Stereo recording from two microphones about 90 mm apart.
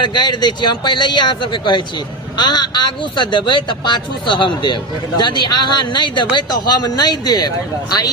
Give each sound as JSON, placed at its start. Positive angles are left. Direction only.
{"t": 0.0, "sound": "a man's voice", "side_deg": 55}
{"t": 6.7, "sound": "speech", "side_deg": 45}